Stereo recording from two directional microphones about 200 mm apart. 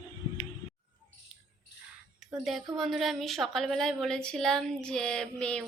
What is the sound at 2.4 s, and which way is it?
A woman's voice, centre (ahead or behind).